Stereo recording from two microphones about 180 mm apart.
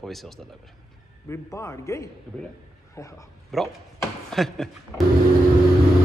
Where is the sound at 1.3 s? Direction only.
15° left (ahead or behind).